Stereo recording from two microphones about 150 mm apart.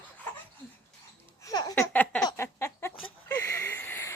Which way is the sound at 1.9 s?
5° left (ahead or behind).